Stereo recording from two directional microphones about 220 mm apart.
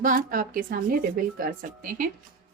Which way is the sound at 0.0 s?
40° right (ahead or behind).